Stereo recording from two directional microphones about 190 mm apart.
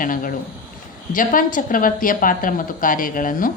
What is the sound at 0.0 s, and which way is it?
Speech, 45° left (ahead or behind).